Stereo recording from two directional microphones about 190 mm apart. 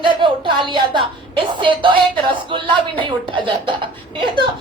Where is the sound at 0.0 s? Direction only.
25° right (ahead or behind).